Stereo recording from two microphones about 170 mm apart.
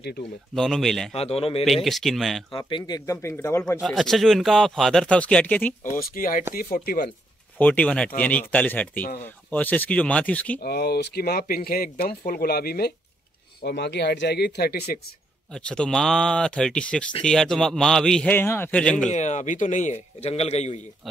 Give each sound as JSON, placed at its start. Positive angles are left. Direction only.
{"t": 0.6, "sound": "a man's voice", "side_deg": 0}
{"t": 1.1, "sound": "a man's voice", "side_deg": 35}
{"t": 1.9, "sound": "a man's voice", "side_deg": 0}
{"t": 2.5, "sound": "speech", "side_deg": 30}
{"t": 3.1, "sound": "speech", "side_deg": 15}
{"t": 3.8, "sound": "a man's voice", "side_deg": 0}
{"t": 6.0, "sound": "speech", "side_deg": 55}
{"t": 7.5, "sound": "speech", "side_deg": 10}
{"t": 10.6, "sound": "speech", "side_deg": 70}
{"t": 13.6, "sound": "speech", "side_deg": 85}
{"t": 15.5, "sound": "a man's voice", "side_deg": 5}
{"t": 19.0, "sound": "a man's voice", "side_deg": 45}